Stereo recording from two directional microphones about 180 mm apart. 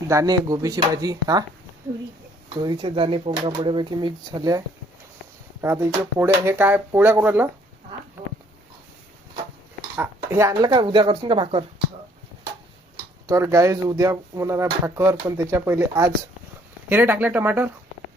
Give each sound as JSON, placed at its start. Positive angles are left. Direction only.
{"t": 0.1, "sound": "speech", "side_deg": -20}
{"t": 2.6, "sound": "speech", "side_deg": -25}
{"t": 5.6, "sound": "speech", "side_deg": -15}
{"t": 10.0, "sound": "speech", "side_deg": -15}
{"t": 13.2, "sound": "speech", "side_deg": -20}